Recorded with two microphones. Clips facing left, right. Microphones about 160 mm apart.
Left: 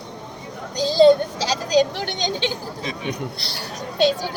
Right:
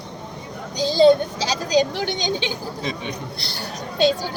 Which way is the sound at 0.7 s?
Centre (ahead or behind).